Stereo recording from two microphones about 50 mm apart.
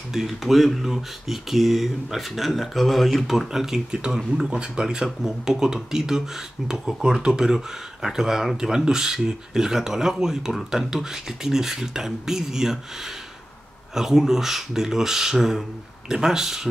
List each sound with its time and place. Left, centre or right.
0.1 s speech: centre
13.9 s speech: centre